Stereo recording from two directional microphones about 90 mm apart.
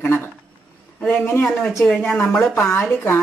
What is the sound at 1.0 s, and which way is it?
Speech, 10° left (ahead or behind).